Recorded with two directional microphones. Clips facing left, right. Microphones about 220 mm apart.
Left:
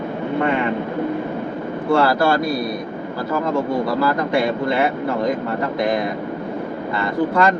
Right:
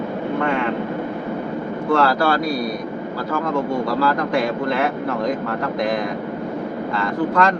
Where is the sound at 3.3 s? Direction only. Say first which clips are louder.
Left 2 dB; 5° left (ahead or behind).